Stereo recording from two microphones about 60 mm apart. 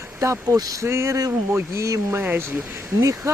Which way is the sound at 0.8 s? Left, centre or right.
Right.